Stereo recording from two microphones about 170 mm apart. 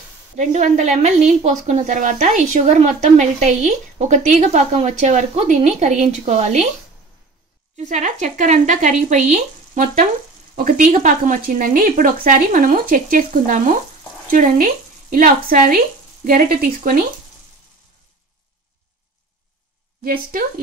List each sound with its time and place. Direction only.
0.4 s a woman's voice: 45° right (ahead or behind)
7.7 s a woman's voice: 45° right (ahead or behind)
20.0 s speech: 55° right (ahead or behind)